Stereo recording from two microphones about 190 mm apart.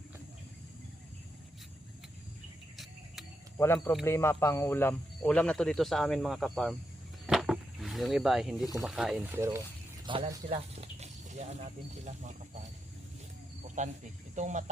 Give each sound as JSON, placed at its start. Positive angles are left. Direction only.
{"t": 3.6, "sound": "speech", "side_deg": 15}
{"t": 7.3, "sound": "a sound", "side_deg": 0}
{"t": 8.7, "sound": "speech", "side_deg": 0}
{"t": 10.1, "sound": "speech", "side_deg": -25}
{"t": 10.8, "sound": "speech", "side_deg": -35}
{"t": 13.8, "sound": "speech", "side_deg": -40}